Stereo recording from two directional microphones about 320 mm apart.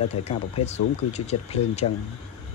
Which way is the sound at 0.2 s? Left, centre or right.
Centre.